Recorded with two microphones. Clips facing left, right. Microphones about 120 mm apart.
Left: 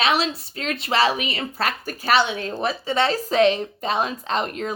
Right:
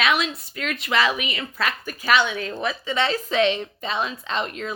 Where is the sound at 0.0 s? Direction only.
35° left (ahead or behind).